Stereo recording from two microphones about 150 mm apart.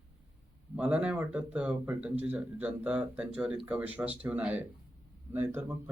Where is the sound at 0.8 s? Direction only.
10° right (ahead or behind).